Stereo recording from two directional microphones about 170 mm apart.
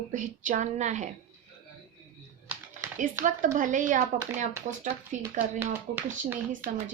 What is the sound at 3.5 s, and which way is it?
Speech, 50° right (ahead or behind).